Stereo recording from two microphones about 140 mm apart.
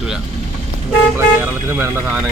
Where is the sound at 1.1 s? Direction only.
20° right (ahead or behind).